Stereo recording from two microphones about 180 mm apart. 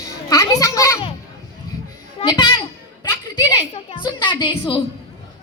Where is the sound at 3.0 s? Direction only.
25° left (ahead or behind).